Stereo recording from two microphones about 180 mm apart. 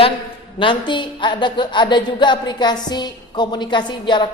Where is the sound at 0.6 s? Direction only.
25° left (ahead or behind).